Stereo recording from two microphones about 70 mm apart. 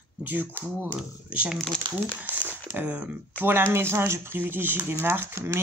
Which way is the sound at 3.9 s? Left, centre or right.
Right.